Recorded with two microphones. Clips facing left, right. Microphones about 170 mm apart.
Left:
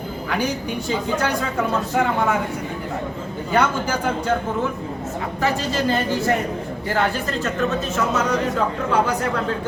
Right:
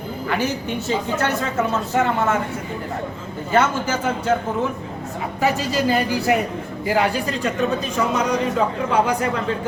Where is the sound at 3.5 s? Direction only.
5° right (ahead or behind).